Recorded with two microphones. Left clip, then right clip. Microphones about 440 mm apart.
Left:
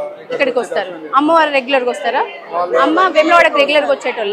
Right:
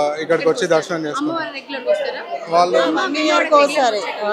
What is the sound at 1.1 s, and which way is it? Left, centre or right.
A woman's voice, left.